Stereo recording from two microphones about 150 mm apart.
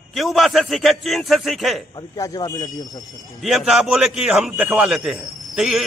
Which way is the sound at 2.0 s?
25° left (ahead or behind).